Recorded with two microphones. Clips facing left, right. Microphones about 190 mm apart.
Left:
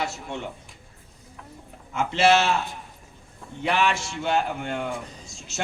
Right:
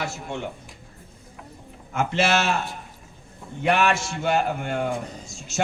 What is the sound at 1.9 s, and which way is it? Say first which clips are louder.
Speech: left 2 dB; 50° right (ahead or behind).